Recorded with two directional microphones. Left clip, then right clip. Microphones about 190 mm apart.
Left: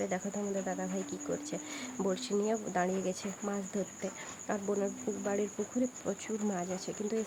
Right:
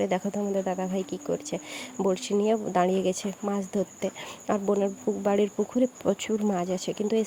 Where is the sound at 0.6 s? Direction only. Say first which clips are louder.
Right 8 dB; 40° right (ahead or behind).